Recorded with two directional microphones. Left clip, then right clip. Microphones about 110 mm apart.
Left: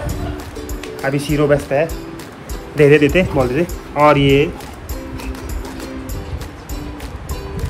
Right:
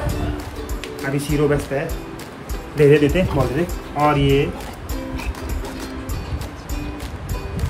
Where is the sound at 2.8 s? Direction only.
25° right (ahead or behind).